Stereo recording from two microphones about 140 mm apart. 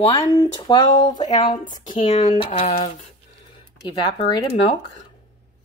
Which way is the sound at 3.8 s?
35° left (ahead or behind).